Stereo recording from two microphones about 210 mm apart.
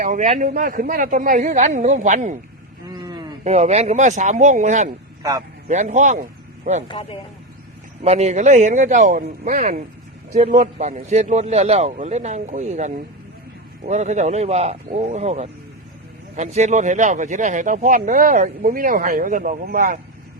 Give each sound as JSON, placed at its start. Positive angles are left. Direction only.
{"t": 0.0, "sound": "speech", "side_deg": -35}
{"t": 2.8, "sound": "a sound", "side_deg": -20}
{"t": 3.4, "sound": "speech", "side_deg": -30}
{"t": 6.8, "sound": "speech", "side_deg": 20}
{"t": 8.0, "sound": "speech", "side_deg": -30}